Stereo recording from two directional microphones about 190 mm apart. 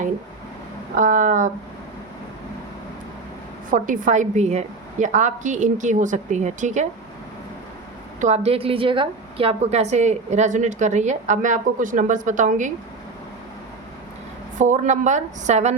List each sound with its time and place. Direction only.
0.9 s speech: 45° right (ahead or behind)
3.7 s a woman's voice: 45° right (ahead or behind)
8.2 s a woman's voice: 35° right (ahead or behind)
14.6 s a woman's voice: 40° right (ahead or behind)